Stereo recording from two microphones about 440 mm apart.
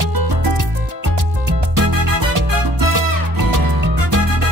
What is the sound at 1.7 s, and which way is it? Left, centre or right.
Music, right.